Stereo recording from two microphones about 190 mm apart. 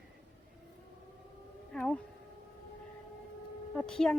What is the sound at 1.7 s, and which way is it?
Speech, 5° left (ahead or behind).